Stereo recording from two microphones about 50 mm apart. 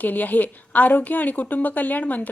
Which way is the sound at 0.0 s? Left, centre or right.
Left.